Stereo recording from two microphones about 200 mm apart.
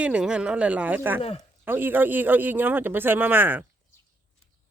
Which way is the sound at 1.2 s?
30° left (ahead or behind).